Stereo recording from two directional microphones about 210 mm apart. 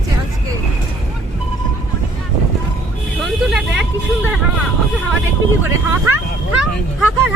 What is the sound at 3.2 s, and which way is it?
Speech, centre (ahead or behind).